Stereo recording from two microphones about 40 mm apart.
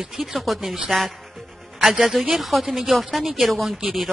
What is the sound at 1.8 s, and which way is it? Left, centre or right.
A woman's voice, centre.